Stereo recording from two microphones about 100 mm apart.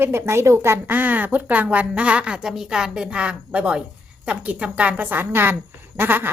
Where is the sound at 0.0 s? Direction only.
25° right (ahead or behind).